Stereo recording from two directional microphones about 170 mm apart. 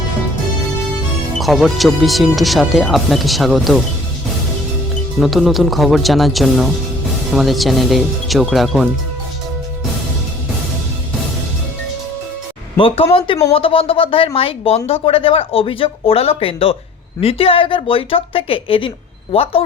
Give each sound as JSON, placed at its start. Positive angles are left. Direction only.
{"t": 1.4, "sound": "speech", "side_deg": 0}
{"t": 5.2, "sound": "speech", "side_deg": 0}
{"t": 12.7, "sound": "speech", "side_deg": 30}